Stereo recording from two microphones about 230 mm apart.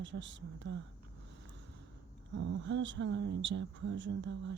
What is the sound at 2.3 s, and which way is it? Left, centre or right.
Speech, right.